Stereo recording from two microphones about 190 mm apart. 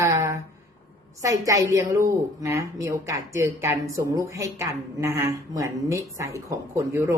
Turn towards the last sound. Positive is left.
turn(degrees=-15)  # may be behind; listen again after turning